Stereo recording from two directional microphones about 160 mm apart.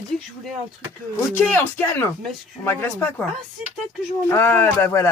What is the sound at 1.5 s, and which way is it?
Speech, 15° left (ahead or behind).